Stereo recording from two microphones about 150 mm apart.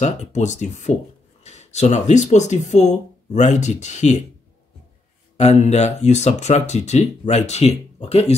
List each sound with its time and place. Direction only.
0.0 s speech: 50° left (ahead or behind)
5.4 s speech: 50° left (ahead or behind)